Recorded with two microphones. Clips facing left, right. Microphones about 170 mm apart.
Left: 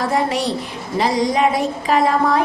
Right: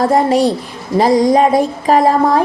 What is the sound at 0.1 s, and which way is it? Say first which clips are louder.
A woman's voice: right 7 dB; 40° right (ahead or behind).